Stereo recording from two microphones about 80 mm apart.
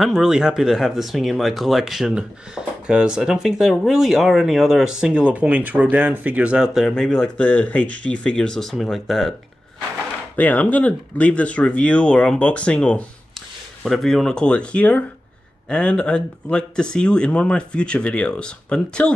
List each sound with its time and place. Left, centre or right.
0.0 s speech: centre
6.9 s speech: centre
7.4 s speech: centre
10.3 s speech: left
13.8 s speech: centre